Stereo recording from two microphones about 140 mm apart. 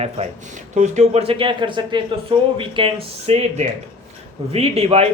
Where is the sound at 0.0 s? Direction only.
55° right (ahead or behind).